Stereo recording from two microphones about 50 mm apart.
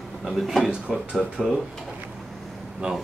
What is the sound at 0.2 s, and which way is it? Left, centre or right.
Speech, centre.